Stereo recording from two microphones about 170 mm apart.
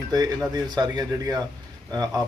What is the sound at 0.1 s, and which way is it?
A man's voice, 25° right (ahead or behind).